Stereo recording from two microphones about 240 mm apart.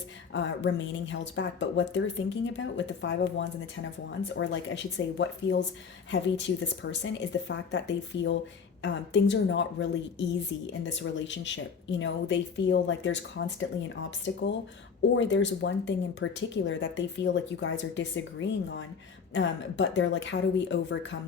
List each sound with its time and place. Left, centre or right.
0.3 s speech: left
15.1 s speech: left